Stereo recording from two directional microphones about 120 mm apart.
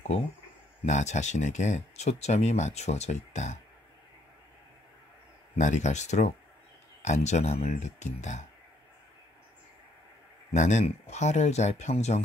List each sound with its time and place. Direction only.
0.8 s speech: 75° left (ahead or behind)
5.6 s speech: 85° left
10.5 s speech: 75° left (ahead or behind)